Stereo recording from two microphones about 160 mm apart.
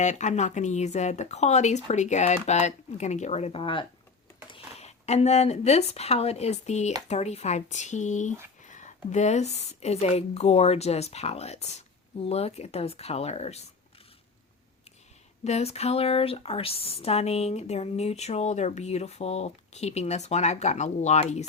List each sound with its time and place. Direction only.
0.0 s speech: 50° left (ahead or behind)
15.4 s speech: 40° left (ahead or behind)